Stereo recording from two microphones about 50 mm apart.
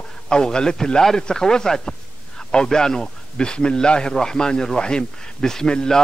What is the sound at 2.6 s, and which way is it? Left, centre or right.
A man's voice, centre.